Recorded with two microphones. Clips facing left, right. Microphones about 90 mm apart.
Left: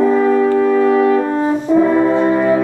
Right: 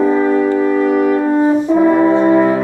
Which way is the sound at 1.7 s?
Centre (ahead or behind).